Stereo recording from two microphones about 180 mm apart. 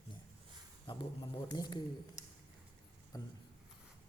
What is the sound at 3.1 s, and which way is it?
Speech, 20° left (ahead or behind).